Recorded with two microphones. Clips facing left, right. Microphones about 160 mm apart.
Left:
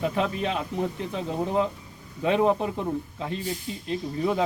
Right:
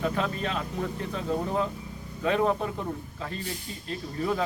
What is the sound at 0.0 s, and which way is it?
Speech, 20° left (ahead or behind).